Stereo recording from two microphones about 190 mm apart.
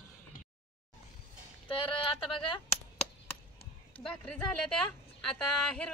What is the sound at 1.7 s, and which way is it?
Speech, 30° left (ahead or behind).